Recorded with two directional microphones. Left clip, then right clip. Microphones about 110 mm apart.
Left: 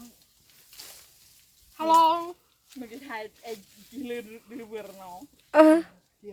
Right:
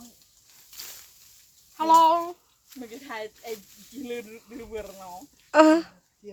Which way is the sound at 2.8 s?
20° left (ahead or behind).